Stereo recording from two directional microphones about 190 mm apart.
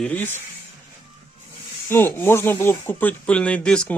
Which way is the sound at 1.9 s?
10° left (ahead or behind).